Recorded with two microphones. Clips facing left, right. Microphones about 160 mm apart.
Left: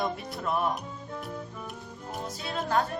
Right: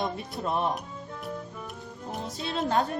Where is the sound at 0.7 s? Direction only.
Centre (ahead or behind).